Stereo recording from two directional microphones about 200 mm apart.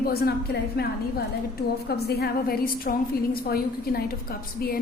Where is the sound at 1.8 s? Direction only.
55° left (ahead or behind).